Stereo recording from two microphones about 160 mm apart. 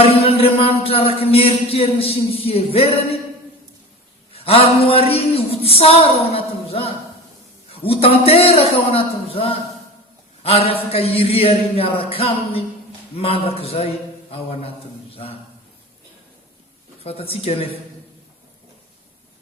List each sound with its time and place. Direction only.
0.0 s music: 40° left (ahead or behind)
4.3 s music: 35° left (ahead or behind)
15.1 s a sound: 35° left (ahead or behind)
17.0 s music: 35° left (ahead or behind)